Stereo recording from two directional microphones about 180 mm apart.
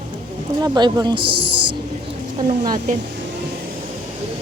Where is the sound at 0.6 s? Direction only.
20° right (ahead or behind).